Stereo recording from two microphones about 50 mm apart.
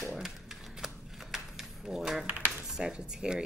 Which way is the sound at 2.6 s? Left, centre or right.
Centre.